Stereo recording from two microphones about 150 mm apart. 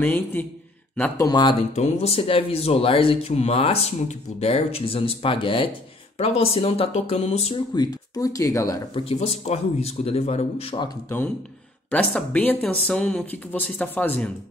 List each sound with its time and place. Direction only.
0.0 s speech: 15° left (ahead or behind)
1.1 s speech: 25° left (ahead or behind)
1.6 s speech: 50° left (ahead or behind)
7.7 s speech: 25° left (ahead or behind)
8.9 s speech: 40° left (ahead or behind)
11.9 s speech: 10° left (ahead or behind)